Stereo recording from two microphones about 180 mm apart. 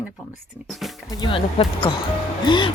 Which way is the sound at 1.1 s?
25° left (ahead or behind).